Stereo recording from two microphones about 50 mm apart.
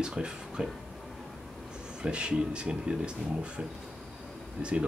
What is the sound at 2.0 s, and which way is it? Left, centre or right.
Speech, centre.